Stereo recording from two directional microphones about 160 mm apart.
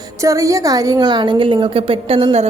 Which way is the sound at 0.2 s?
20° right (ahead or behind).